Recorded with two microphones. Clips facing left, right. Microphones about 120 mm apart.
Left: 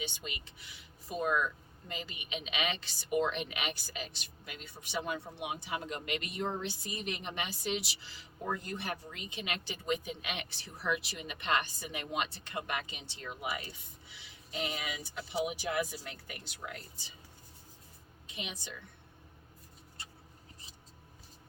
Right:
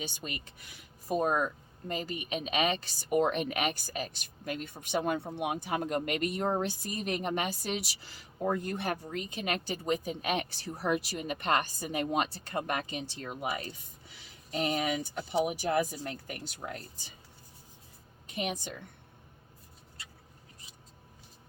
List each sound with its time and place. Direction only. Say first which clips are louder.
0.0 s a woman's voice: right 2 dB; 40° right (ahead or behind)
14.1 s a sound: right 6 dB; 45° right (ahead or behind)
15.4 s a woman's voice: right 5 dB; 45° right (ahead or behind)
18.3 s a woman's voice: right 9 dB; 50° right (ahead or behind)